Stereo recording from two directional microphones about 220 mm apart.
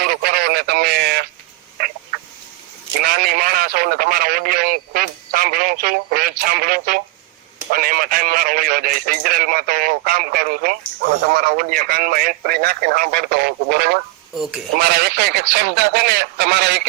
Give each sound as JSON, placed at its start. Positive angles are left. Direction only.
{"t": 0.0, "sound": "a sound", "side_deg": -45}
{"t": 3.0, "sound": "radio", "side_deg": -45}
{"t": 7.7, "sound": "speech", "side_deg": -40}
{"t": 14.3, "sound": "speech", "side_deg": 0}
{"t": 14.8, "sound": "speech", "side_deg": -50}